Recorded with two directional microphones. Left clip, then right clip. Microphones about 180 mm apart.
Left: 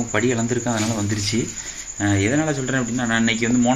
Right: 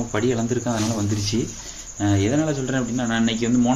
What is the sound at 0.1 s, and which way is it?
Speech, 5° left (ahead or behind).